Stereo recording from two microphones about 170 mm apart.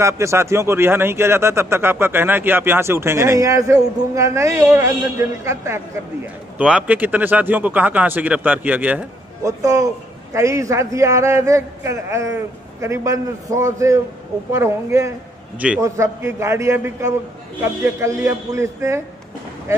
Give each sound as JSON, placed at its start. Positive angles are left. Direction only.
{"t": 0.0, "sound": "a man's voice", "side_deg": -15}
{"t": 9.4, "sound": "a man's voice", "side_deg": -20}